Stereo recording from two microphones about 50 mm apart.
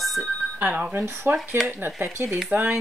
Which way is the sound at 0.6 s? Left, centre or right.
Right.